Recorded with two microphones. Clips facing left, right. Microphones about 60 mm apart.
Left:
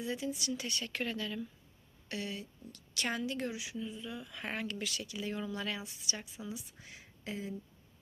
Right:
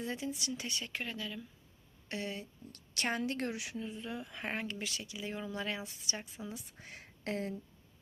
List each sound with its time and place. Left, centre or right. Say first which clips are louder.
0.0 s speech: left 1 dB; right
1.0 s speech: left 4 dB; centre
2.0 s a woman's voice: even; right
6.5 s speech: left 1 dB; right